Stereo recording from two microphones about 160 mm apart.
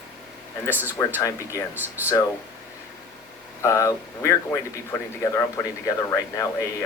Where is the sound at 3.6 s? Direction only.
20° left (ahead or behind).